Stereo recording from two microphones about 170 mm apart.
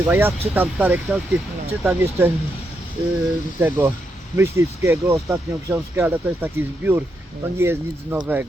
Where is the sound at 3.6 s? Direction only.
15° right (ahead or behind).